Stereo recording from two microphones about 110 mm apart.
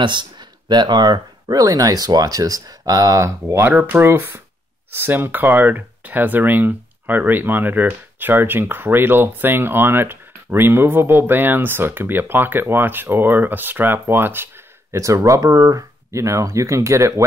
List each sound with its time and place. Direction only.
0.0 s speech: 45° right (ahead or behind); by 17.1 s 25° right (ahead or behind)